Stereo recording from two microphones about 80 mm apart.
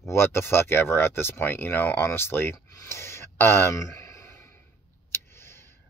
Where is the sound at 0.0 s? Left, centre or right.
Left.